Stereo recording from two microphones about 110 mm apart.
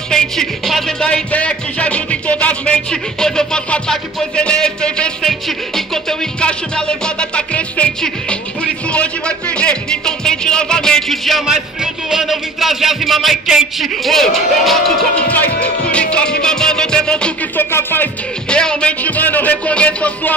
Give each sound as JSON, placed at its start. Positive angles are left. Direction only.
{"t": 0.1, "sound": "speech", "side_deg": 5}
{"t": 15.2, "sound": "speech", "side_deg": 15}
{"t": 17.6, "sound": "speech", "side_deg": 20}
{"t": 18.5, "sound": "speech", "side_deg": 10}